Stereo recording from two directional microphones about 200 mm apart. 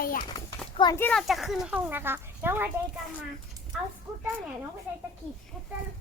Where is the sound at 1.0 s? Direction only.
Centre (ahead or behind).